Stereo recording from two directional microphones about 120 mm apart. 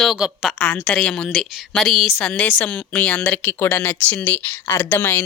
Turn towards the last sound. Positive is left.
turn(degrees=15)  # may be behind; listen again after turning